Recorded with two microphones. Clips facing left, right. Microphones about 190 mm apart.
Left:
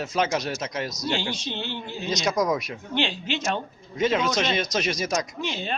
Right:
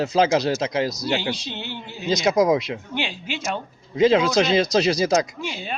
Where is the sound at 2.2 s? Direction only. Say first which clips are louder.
Right 6 dB; 25° right (ahead or behind).